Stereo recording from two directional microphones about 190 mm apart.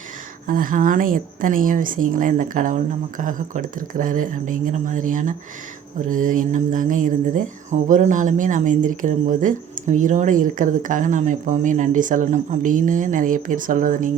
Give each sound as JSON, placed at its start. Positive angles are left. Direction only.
{"t": 0.4, "sound": "speech", "side_deg": -45}